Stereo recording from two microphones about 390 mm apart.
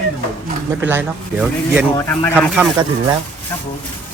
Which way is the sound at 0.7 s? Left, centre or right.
Centre.